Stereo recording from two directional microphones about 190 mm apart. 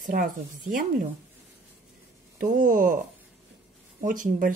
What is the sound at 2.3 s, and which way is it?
Speech, 45° right (ahead or behind).